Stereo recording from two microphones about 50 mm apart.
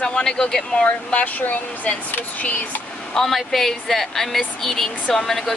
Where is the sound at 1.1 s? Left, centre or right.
Left.